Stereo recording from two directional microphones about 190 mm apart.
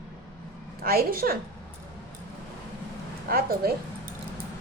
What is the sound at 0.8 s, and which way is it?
Speech, 50° right (ahead or behind).